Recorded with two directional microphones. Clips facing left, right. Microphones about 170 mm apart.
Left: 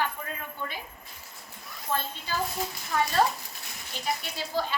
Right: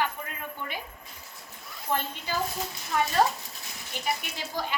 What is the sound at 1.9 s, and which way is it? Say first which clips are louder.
Speech: right 1 dB; 15° right (ahead or behind).